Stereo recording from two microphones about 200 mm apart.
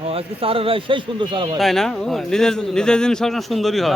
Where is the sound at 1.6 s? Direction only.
Centre (ahead or behind).